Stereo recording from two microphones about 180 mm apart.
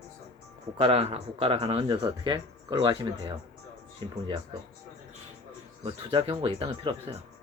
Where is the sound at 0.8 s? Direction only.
35° right (ahead or behind).